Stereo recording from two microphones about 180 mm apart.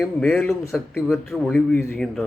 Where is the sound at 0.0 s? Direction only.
5° left (ahead or behind).